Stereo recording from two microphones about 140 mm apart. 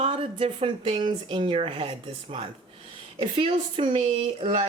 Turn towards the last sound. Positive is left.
turn(degrees=-40)  # may be behind; listen again after turning